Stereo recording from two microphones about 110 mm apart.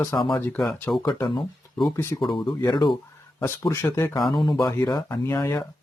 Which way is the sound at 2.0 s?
25° left (ahead or behind).